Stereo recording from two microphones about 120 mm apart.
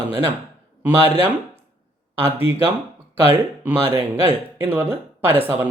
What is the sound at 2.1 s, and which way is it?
Speech, 20° right (ahead or behind).